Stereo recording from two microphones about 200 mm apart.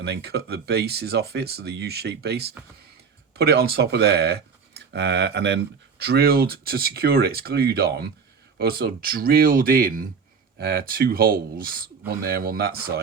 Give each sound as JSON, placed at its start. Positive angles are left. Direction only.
{"t": 0.0, "sound": "speech", "side_deg": -55}